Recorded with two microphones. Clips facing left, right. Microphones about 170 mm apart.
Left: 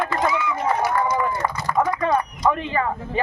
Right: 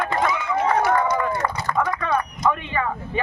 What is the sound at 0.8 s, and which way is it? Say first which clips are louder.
Speech: right 1 dB; 65° right (ahead or behind).